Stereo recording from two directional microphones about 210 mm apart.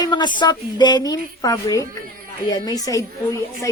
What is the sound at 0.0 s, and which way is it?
Speech, 20° left (ahead or behind).